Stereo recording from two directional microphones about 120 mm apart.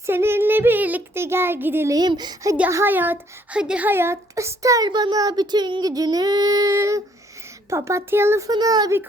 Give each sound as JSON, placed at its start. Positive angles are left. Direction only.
{"t": 0.0, "sound": "a woman's voice", "side_deg": -20}
{"t": 2.0, "sound": "speech", "side_deg": -35}
{"t": 2.6, "sound": "a woman's voice", "side_deg": -20}
{"t": 8.4, "sound": "speech", "side_deg": -35}